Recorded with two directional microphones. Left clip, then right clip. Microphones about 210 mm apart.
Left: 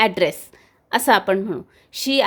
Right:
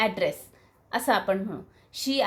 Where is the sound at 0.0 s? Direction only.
55° left (ahead or behind).